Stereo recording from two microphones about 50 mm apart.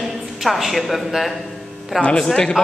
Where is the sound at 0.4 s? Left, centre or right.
Centre.